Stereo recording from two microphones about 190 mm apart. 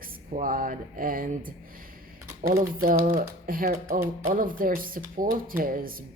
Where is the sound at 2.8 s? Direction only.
50° right (ahead or behind).